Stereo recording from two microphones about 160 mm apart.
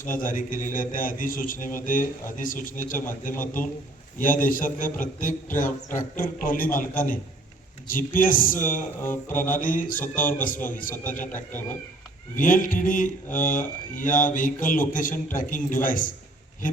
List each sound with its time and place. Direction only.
0.0 s a man's voice: 60° left (ahead or behind)
12.4 s a man's voice: 55° left (ahead or behind)